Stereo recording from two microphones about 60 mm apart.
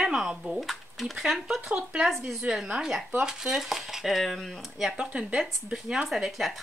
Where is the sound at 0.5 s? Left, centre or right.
Centre.